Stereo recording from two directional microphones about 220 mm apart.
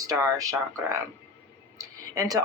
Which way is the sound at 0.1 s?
15° right (ahead or behind).